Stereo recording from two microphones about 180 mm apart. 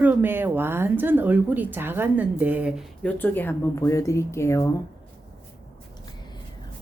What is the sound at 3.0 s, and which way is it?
A woman's voice, 10° left (ahead or behind).